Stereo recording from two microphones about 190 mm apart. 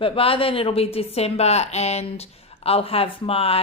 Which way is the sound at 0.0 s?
30° left (ahead or behind).